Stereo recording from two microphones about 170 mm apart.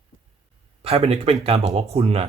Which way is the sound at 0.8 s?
35° right (ahead or behind).